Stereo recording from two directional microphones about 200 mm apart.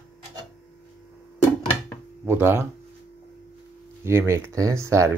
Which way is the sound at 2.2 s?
10° right (ahead or behind).